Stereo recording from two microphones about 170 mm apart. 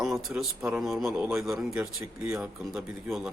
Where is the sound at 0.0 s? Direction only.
Centre (ahead or behind).